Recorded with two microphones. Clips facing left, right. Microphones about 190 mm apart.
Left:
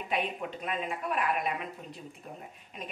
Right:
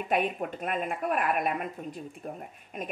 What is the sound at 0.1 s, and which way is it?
Speech, 50° right (ahead or behind).